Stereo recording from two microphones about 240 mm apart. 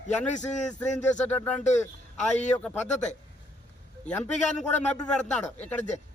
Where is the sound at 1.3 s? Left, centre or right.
Centre.